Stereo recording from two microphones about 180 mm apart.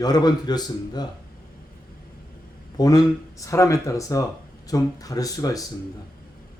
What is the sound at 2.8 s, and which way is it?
A man's voice, 20° left (ahead or behind).